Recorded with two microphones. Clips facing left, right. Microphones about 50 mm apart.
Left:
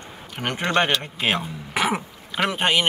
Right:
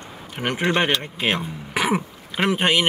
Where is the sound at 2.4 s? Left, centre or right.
Centre.